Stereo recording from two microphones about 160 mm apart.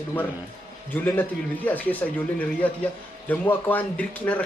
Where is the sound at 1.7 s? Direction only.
10° left (ahead or behind).